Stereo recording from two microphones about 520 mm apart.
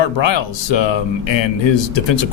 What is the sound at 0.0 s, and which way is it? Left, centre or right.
Speech, left.